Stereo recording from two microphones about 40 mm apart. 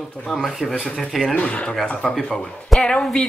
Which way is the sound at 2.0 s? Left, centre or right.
Left.